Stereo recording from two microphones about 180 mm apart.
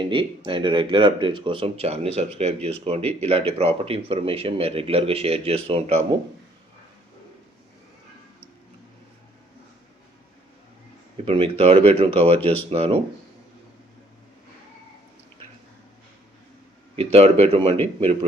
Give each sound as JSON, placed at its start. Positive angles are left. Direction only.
{"t": 0.1, "sound": "speech", "side_deg": -30}
{"t": 11.3, "sound": "speech", "side_deg": -30}
{"t": 17.0, "sound": "speech", "side_deg": -35}